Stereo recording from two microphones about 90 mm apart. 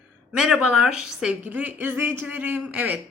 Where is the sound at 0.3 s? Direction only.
5° right (ahead or behind).